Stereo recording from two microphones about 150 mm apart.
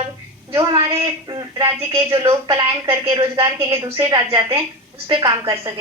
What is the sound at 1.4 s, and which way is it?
Speech, 25° right (ahead or behind).